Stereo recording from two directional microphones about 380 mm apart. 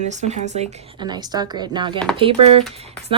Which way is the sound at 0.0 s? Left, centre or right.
Centre.